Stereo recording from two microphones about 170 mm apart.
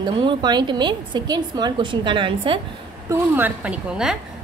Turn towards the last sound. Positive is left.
turn(degrees=-5)  # may be behind; listen again after turning